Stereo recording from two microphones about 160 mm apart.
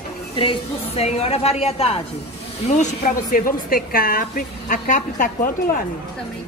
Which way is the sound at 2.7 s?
55° left (ahead or behind).